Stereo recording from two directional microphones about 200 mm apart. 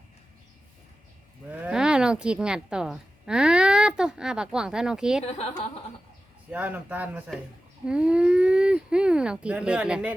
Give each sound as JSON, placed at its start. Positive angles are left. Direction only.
{"t": 1.5, "sound": "speech", "side_deg": -5}
{"t": 5.2, "sound": "a woman's voice", "side_deg": 30}
{"t": 6.5, "sound": "speech", "side_deg": -5}